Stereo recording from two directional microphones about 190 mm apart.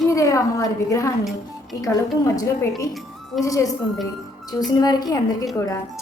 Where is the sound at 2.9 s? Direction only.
Centre (ahead or behind).